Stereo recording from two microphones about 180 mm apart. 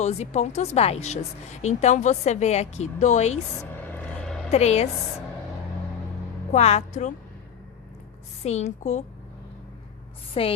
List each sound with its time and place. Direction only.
0.0 s speech: 35° left (ahead or behind)
3.9 s vehicle: 5° left (ahead or behind)
4.5 s speech: 35° left (ahead or behind)
6.5 s speech: 35° left (ahead or behind)
8.4 s speech: 40° left (ahead or behind)
10.4 s speech: 30° left (ahead or behind)